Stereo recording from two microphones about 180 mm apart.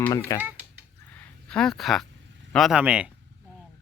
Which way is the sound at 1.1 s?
10° left (ahead or behind).